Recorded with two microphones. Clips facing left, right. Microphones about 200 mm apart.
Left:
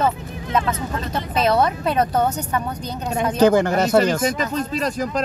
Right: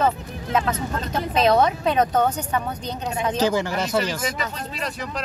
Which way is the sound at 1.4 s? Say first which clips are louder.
Even; 5° left (ahead or behind).